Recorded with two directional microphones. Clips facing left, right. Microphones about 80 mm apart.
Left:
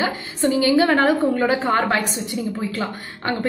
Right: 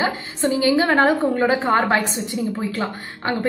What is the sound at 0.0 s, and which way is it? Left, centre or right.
A woman's voice, right.